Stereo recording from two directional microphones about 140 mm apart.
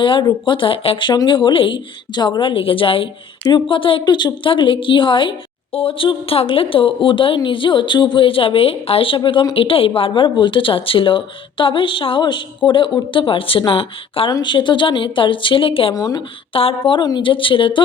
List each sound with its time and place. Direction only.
0.0 s a woman's voice: 35° left (ahead or behind)
16.0 s speech: 25° left (ahead or behind)
16.5 s a woman's voice: 40° left (ahead or behind)